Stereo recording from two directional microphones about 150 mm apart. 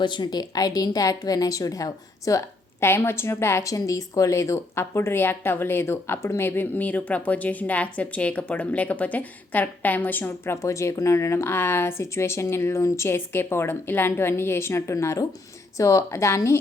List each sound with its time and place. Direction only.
0.0 s a woman's voice: 30° left (ahead or behind)